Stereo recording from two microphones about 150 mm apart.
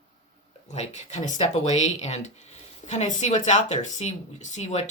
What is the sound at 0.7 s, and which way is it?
Speech, 50° left (ahead or behind).